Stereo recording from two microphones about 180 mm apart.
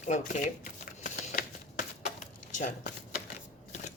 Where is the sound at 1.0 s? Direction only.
45° left (ahead or behind).